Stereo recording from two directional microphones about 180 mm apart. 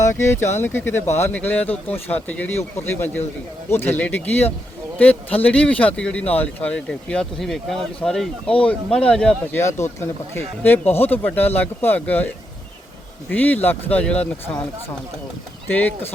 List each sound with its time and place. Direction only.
0.0 s a man's voice: 15° left (ahead or behind)
5.4 s a man's voice: 10° left (ahead or behind)
13.3 s a man's voice: 10° left (ahead or behind)
15.7 s a man's voice: 10° left (ahead or behind)